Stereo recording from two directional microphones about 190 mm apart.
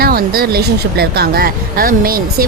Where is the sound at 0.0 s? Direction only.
50° right (ahead or behind).